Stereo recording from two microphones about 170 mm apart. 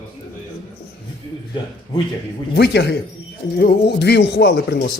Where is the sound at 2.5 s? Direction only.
70° left (ahead or behind).